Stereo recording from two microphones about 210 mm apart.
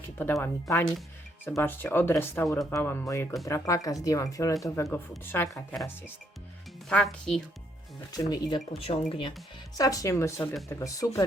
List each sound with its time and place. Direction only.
0.2 s speech: 10° left (ahead or behind)
8.1 s speech: 20° left (ahead or behind)